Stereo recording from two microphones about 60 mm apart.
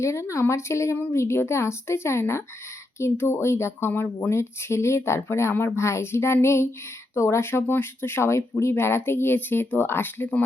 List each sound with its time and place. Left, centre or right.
0.0 s speech: left
4.3 s speech: left